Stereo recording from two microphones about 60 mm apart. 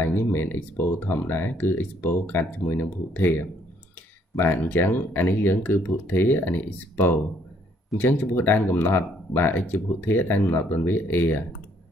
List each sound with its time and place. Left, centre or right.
0.0 s speech: left